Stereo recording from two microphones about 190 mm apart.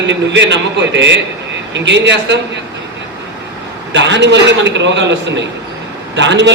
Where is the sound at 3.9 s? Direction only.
70° right (ahead or behind).